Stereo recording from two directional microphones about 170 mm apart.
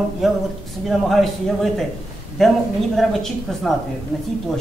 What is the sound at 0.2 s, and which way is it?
A man's voice, centre (ahead or behind).